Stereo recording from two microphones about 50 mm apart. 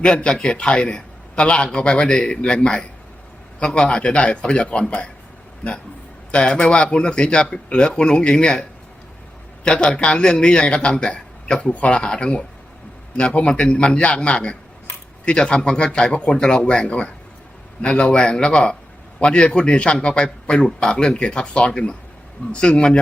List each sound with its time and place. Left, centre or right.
0.0 s a man's voice: centre
4.9 s speech: left
6.3 s a man's voice: left
9.6 s a man's voice: centre